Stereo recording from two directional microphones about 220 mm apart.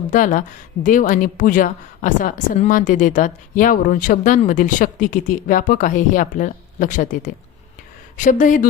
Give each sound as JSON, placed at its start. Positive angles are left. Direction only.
{"t": 0.1, "sound": "a woman's voice", "side_deg": 35}